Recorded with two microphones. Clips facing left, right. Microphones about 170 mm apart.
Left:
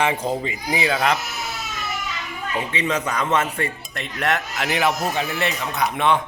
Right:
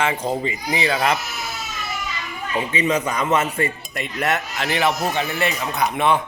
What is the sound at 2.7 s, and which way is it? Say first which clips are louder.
Speech: right 3 dB; 10° right (ahead or behind).